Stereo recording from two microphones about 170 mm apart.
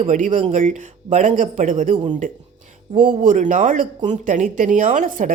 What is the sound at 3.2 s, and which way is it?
Speech, 50° right (ahead or behind).